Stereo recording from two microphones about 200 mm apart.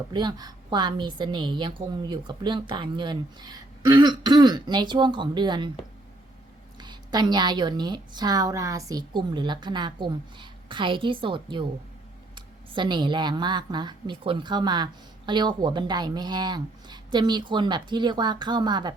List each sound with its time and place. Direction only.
0.1 s a woman's voice: 20° right (ahead or behind)
6.7 s a woman's voice: 20° right (ahead or behind)